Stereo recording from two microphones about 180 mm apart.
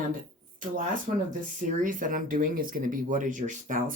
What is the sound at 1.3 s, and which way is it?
Speech, 45° right (ahead or behind).